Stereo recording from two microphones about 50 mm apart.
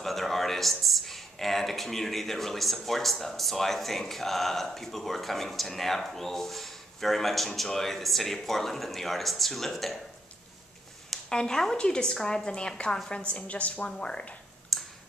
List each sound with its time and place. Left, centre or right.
0.0 s speech: centre
11.2 s a woman's voice: centre
14.7 s a sound: centre